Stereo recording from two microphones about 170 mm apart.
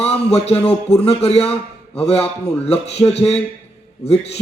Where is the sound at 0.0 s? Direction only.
35° left (ahead or behind).